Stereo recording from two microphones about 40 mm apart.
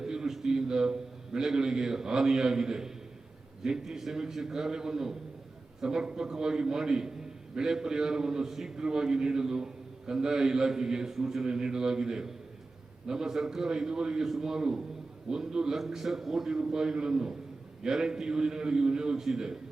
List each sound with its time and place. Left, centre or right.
0.0 s a sound: centre
0.3 s a man's voice: centre
11.4 s a man's voice: centre